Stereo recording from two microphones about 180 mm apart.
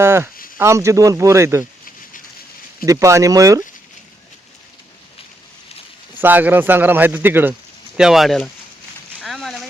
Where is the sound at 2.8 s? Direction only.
20° right (ahead or behind).